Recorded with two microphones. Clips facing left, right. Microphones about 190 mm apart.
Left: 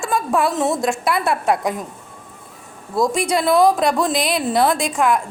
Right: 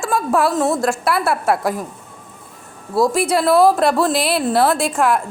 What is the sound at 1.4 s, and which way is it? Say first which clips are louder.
Speech: right 1 dB; 15° left (ahead or behind).